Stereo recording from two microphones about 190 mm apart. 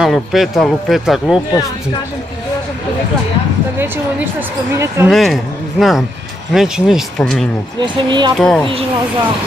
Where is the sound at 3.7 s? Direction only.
10° right (ahead or behind).